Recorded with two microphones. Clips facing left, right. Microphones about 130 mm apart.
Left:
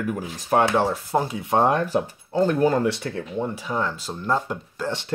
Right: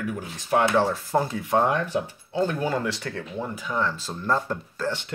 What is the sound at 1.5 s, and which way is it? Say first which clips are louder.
Speech: left 5 dB; 35° left (ahead or behind).